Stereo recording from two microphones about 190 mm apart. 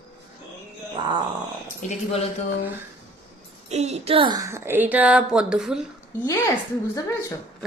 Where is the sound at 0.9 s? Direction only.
20° right (ahead or behind).